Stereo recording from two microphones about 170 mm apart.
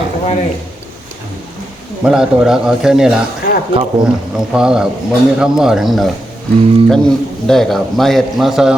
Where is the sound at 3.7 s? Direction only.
30° right (ahead or behind).